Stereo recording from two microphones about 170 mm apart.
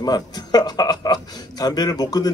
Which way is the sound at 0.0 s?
25° left (ahead or behind).